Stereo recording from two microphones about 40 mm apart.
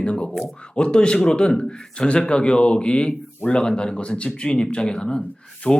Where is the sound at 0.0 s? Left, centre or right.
Left.